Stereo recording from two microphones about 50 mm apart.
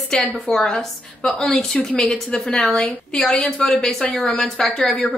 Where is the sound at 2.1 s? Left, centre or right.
Centre.